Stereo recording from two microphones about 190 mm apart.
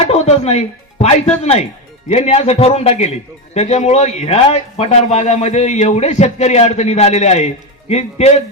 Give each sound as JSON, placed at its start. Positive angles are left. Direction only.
{"t": 0.1, "sound": "a man's voice", "side_deg": 35}